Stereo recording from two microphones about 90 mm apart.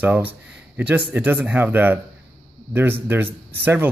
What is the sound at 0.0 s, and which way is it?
Speech, 20° right (ahead or behind).